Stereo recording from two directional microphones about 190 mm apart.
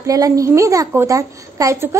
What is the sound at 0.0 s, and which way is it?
A woman's voice, 15° right (ahead or behind).